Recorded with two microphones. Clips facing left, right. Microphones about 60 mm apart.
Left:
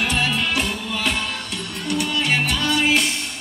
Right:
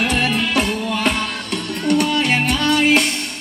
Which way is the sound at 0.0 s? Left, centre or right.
Right.